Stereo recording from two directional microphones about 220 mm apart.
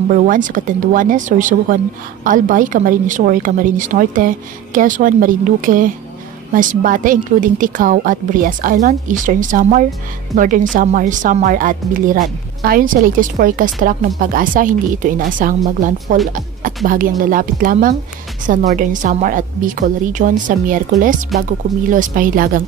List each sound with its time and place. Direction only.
0.1 s a woman's voice: 35° right (ahead or behind)